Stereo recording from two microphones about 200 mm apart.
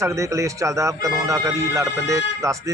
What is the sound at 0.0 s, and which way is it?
Speech, 15° right (ahead or behind).